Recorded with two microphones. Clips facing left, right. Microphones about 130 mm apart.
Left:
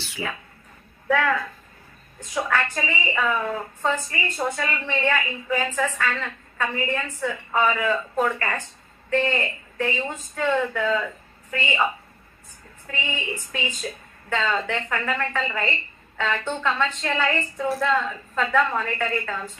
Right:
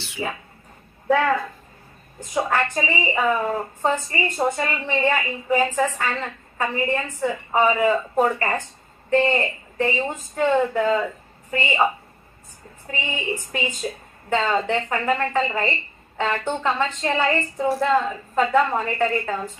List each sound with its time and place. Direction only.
1.0 s a woman's voice: 30° right (ahead or behind)
12.9 s a woman's voice: 20° right (ahead or behind)